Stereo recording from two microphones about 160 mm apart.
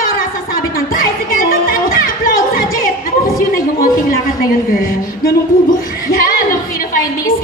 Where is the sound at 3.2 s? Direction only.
65° left (ahead or behind).